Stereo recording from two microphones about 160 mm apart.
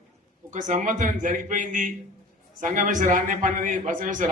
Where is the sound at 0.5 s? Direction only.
50° right (ahead or behind).